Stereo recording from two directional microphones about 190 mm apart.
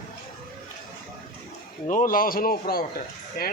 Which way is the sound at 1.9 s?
45° left (ahead or behind).